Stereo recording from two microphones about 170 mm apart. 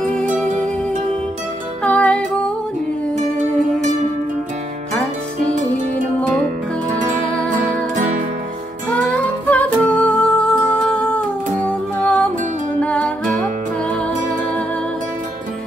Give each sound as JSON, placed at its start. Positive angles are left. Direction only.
{"t": 1.8, "sound": "music", "side_deg": 5}
{"t": 7.0, "sound": "music", "side_deg": -50}
{"t": 8.9, "sound": "music", "side_deg": 10}